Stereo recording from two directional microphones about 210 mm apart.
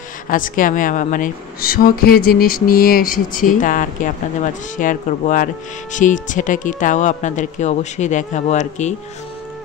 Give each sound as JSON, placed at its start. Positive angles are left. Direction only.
{"t": 0.3, "sound": "a woman's voice", "side_deg": 40}